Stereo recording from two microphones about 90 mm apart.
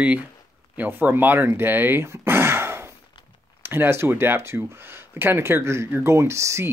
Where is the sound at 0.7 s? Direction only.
20° right (ahead or behind).